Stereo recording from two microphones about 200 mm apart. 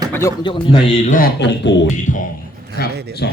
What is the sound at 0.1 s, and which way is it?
Speech, 15° left (ahead or behind).